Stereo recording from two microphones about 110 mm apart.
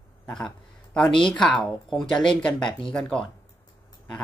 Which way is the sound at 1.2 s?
10° left (ahead or behind).